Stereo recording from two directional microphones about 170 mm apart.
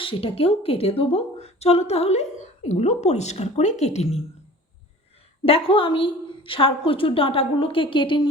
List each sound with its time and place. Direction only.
0.0 s a woman's voice: 30° left (ahead or behind)
5.5 s a woman's voice: 35° left (ahead or behind)